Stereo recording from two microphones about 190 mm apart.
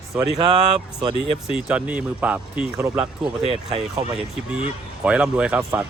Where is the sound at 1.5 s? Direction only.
5° right (ahead or behind).